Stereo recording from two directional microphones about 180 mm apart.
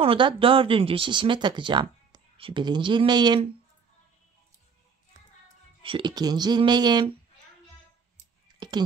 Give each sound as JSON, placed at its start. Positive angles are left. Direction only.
{"t": 0.0, "sound": "speech", "side_deg": -30}
{"t": 5.8, "sound": "speech", "side_deg": -30}
{"t": 8.5, "sound": "a sound", "side_deg": -25}